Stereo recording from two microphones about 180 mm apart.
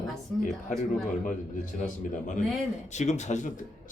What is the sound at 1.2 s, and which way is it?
Speech, 45° left (ahead or behind).